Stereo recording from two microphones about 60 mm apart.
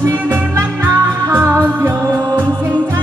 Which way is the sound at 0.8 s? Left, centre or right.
Right.